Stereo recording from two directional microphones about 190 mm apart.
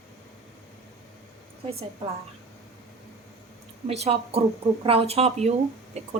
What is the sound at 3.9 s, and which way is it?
A woman's voice, 35° right (ahead or behind).